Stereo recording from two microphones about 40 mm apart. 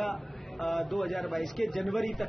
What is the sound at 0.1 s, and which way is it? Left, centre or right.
Mantra, left.